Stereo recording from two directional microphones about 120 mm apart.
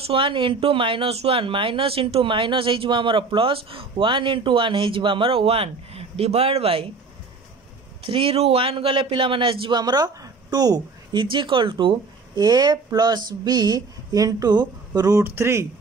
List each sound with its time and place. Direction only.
0.0 s speech: 50° right (ahead or behind)
8.0 s a man's voice: 50° right (ahead or behind); by 15.6 s 20° right (ahead or behind)